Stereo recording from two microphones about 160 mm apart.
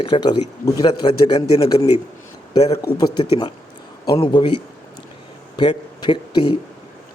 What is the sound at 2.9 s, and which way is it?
A man's voice, 25° left (ahead or behind).